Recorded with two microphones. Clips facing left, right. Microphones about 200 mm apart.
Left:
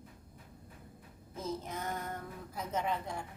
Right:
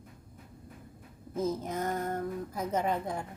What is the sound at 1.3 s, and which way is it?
A woman's voice, 45° right (ahead or behind).